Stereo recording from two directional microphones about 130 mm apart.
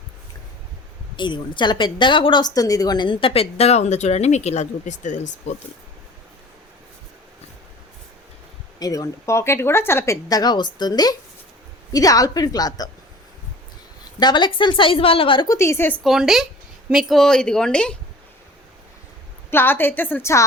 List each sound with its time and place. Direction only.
1.1 s speech: 35° left (ahead or behind); by 5.5 s 65° left (ahead or behind)
8.8 s a woman's voice: 25° left (ahead or behind)
14.2 s a woman's voice: 35° left (ahead or behind)
15.4 s a woman's voice: 20° left (ahead or behind)
16.0 s a woman's voice: 5° right (ahead or behind)
19.5 s a woman's voice: 15° left (ahead or behind)